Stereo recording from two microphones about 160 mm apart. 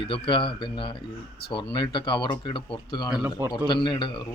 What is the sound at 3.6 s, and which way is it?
Speech, 30° left (ahead or behind).